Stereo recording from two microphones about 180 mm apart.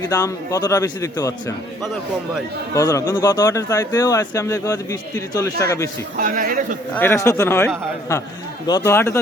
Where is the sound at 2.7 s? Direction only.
15° left (ahead or behind).